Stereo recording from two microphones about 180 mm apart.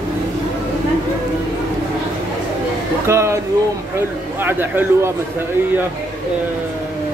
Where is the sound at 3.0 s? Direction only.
15° right (ahead or behind).